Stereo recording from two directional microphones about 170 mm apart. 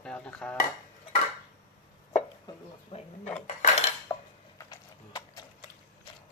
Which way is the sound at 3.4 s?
45° left (ahead or behind).